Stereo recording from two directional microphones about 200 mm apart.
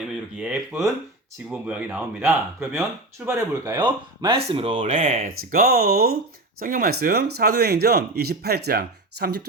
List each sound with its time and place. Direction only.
0.3 s speech: 10° right (ahead or behind); by 5.0 s 25° right (ahead or behind)
5.0 s speech: 40° right (ahead or behind)